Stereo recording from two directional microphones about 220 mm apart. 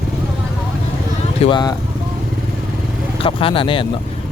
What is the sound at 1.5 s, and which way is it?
Speech, 20° left (ahead or behind).